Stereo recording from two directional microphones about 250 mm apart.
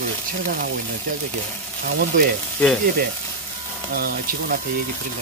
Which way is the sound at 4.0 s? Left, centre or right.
Right.